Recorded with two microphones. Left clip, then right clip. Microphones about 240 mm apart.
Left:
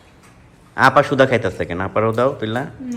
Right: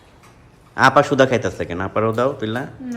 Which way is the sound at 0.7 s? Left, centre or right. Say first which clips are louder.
Even; centre.